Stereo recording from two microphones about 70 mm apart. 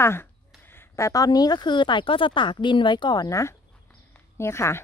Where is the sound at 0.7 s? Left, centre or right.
Left.